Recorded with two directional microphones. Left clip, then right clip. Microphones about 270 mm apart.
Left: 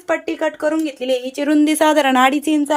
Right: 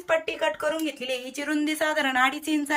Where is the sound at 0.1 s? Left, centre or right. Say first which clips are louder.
Left 5 dB; centre.